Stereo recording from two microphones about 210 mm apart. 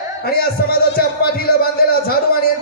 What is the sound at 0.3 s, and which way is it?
Speech, 45° left (ahead or behind).